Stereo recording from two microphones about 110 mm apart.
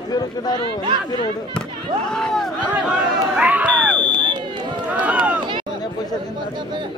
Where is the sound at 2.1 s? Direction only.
5° left (ahead or behind).